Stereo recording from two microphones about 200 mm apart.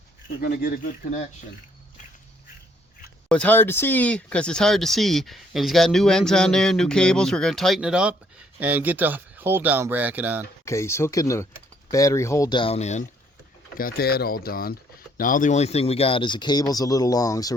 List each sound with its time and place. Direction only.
0.4 s speech: 50° left (ahead or behind)
3.2 s speech: 5° left (ahead or behind)
10.7 s speech: 15° left (ahead or behind); by 13.1 s 35° left (ahead or behind)
13.7 s speech: 50° left (ahead or behind); by 17.5 s 15° left (ahead or behind)